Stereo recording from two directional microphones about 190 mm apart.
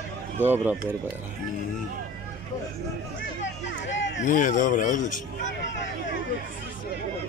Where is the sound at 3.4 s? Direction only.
70° left (ahead or behind).